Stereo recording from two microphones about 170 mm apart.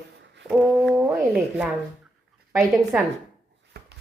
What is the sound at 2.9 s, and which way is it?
Speech, 5° right (ahead or behind).